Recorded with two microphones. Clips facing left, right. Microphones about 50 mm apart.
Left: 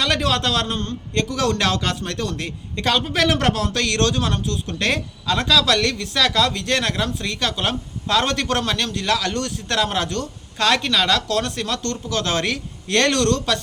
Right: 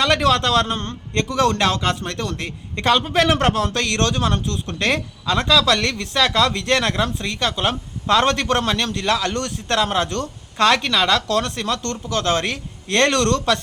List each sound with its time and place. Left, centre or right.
0.0 s speech: right
0.8 s a man's voice: right
1.4 s a man's voice: right
6.9 s a man's voice: right
8.0 s speech: right
8.4 s a man's voice: right
8.8 s speech: right
9.7 s a man's voice: right
10.1 s speech: right